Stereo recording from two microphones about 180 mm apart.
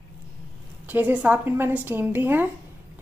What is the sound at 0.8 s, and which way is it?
Speech, 10° right (ahead or behind).